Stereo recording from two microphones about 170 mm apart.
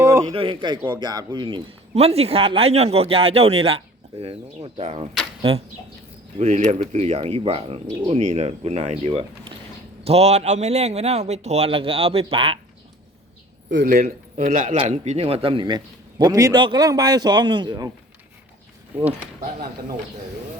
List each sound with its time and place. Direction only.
0.0 s a sound: 15° right (ahead or behind)
0.3 s speech: 30° right (ahead or behind)
13.7 s a man's voice: 80° right
13.9 s speech: 50° right (ahead or behind); by 17.9 s 25° right (ahead or behind)